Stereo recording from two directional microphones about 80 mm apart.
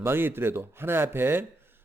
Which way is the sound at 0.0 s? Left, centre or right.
Right.